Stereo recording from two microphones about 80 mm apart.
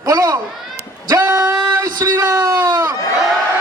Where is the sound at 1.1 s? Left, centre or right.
Right.